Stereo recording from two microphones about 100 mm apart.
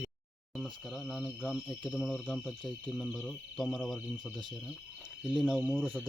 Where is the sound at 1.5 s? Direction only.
5° left (ahead or behind).